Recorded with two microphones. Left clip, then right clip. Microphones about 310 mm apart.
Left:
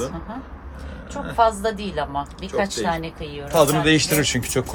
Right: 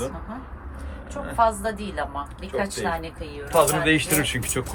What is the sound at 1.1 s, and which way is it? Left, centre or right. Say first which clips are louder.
A woman's voice: left 3 dB; left.